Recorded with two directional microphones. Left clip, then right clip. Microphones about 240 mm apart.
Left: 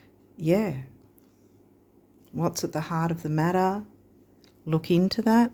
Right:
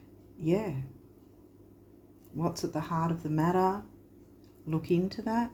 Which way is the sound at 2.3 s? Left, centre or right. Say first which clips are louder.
Left 5 dB; left.